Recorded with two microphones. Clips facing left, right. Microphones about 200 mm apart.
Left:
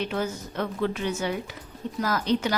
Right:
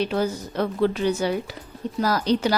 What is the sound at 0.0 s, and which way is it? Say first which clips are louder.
A woman's voice: right 5 dB; 35° right (ahead or behind).